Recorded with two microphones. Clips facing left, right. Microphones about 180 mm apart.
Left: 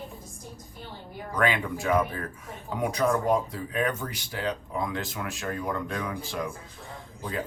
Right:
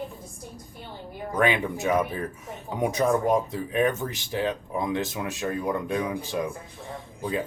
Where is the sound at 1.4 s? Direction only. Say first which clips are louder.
Right 3 dB; 20° right (ahead or behind).